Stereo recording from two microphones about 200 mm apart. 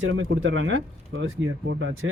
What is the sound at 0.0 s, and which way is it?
Speech, 75° right (ahead or behind).